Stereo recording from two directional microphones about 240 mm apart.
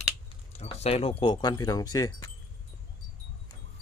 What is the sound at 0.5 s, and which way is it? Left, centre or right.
Speech, left.